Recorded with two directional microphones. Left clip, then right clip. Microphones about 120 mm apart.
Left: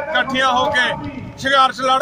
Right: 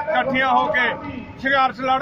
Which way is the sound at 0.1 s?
15° left (ahead or behind).